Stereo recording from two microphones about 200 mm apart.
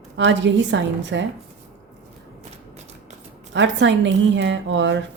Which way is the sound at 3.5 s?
65° right (ahead or behind).